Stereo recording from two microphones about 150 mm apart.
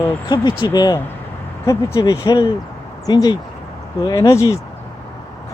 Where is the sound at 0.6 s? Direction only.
30° left (ahead or behind).